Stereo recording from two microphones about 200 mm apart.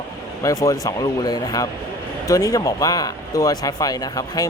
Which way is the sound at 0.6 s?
15° left (ahead or behind).